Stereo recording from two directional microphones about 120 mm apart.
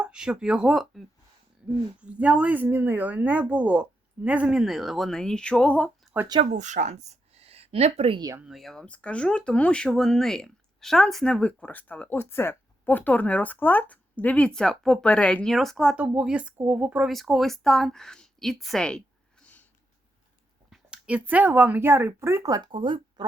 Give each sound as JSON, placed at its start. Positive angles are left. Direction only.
{"t": 0.0, "sound": "speech", "side_deg": -5}
{"t": 2.0, "sound": "speech", "side_deg": -10}
{"t": 6.4, "sound": "speech", "side_deg": -90}
{"t": 8.4, "sound": "speech", "side_deg": -5}
{"t": 16.0, "sound": "speech", "side_deg": -10}
{"t": 17.1, "sound": "a woman's voice", "side_deg": 0}
{"t": 20.7, "sound": "speech", "side_deg": -10}